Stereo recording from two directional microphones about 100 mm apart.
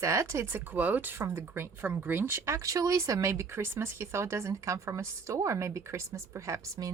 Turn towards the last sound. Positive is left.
turn(degrees=-30)  # may be behind; listen again after turning